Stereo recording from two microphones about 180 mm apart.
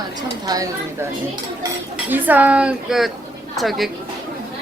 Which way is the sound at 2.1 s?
10° right (ahead or behind).